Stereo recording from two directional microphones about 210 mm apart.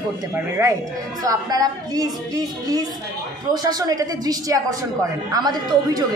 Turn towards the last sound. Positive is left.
turn(degrees=-20)  # may be behind; listen again after turning